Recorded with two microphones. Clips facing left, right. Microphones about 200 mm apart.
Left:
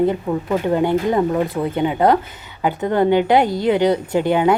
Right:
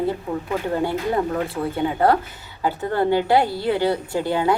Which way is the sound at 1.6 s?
50° left (ahead or behind).